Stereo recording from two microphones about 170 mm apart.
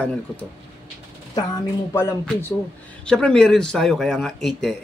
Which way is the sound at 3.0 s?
5° left (ahead or behind).